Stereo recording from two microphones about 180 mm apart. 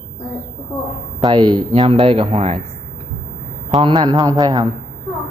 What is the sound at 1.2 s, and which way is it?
Speech, 25° right (ahead or behind).